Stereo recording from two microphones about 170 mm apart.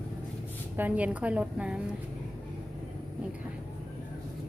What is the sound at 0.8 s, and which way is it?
A woman's voice, 10° right (ahead or behind).